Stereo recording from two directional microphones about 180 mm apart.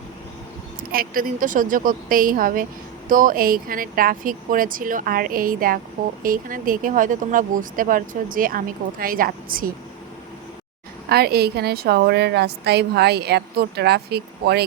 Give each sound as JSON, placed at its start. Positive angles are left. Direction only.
{"t": 0.8, "sound": "speech", "side_deg": -50}
{"t": 11.1, "sound": "a woman's voice", "side_deg": -60}